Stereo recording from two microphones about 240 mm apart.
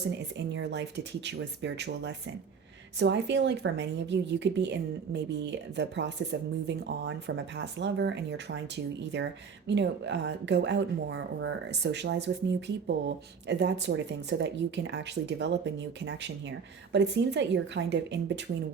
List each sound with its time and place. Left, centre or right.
0.1 s speech: right